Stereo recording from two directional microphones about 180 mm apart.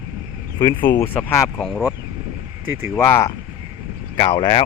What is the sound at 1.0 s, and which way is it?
Speech, 10° left (ahead or behind).